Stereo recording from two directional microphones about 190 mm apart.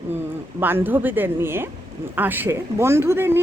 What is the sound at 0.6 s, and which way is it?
Speech, 10° right (ahead or behind).